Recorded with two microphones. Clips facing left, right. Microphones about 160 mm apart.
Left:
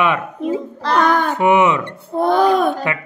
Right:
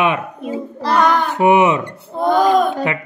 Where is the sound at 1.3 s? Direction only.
20° right (ahead or behind).